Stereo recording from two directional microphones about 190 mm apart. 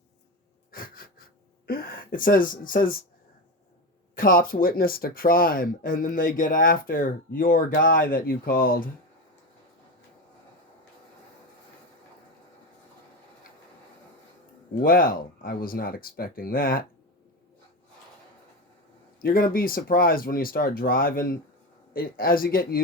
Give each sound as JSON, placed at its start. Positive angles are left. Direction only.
{"t": 0.7, "sound": "a sound", "side_deg": 50}
{"t": 1.6, "sound": "speech", "side_deg": 50}
{"t": 4.1, "sound": "speech", "side_deg": 45}
{"t": 14.8, "sound": "speech", "side_deg": 50}
{"t": 19.2, "sound": "speech", "side_deg": 50}